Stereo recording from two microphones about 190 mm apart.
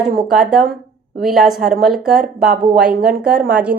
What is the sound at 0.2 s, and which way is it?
Speech, 45° right (ahead or behind).